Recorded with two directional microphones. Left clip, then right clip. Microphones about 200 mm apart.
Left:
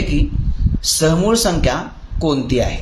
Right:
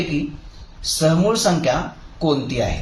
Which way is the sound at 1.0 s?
40° left (ahead or behind).